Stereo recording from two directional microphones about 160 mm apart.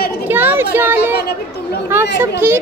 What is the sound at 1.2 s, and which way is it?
Speech, 90° left.